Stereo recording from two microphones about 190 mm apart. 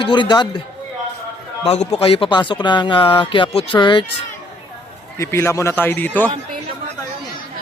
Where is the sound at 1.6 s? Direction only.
35° left (ahead or behind).